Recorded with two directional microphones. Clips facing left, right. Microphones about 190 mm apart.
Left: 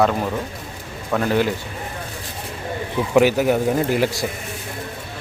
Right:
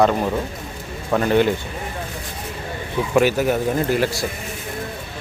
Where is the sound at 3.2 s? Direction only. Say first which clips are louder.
Left 2 dB; 15° left (ahead or behind).